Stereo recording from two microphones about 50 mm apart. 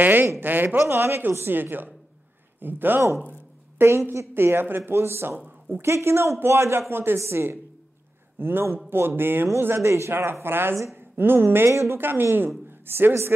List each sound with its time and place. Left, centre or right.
0.0 s speech: right
0.7 s a man's voice: right
3.3 s a sound: right
3.9 s a woman's voice: right
4.3 s a man's voice: right
6.9 s a man's voice: right
7.2 s a woman's voice: right
8.4 s a man's voice: right
9.8 s a man's voice: right
11.7 s a woman's voice: right
12.0 s a woman's voice: right